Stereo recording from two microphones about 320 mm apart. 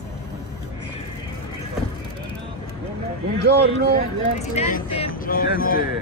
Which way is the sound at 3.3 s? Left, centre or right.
Right.